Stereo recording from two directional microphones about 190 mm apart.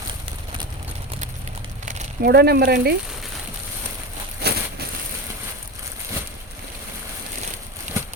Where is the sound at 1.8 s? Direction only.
40° right (ahead or behind).